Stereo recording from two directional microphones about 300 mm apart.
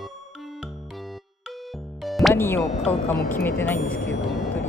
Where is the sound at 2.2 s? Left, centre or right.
Centre.